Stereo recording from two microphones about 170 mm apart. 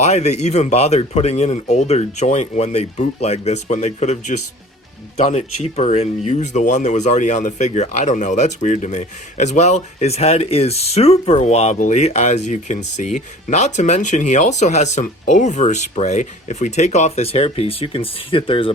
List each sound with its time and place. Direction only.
0.0 s speech: 40° left (ahead or behind)